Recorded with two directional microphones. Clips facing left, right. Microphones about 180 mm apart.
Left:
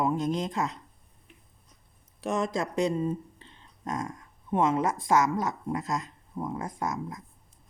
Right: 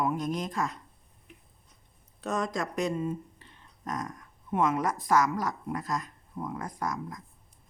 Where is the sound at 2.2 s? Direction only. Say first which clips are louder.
Left 2 dB; 25° left (ahead or behind).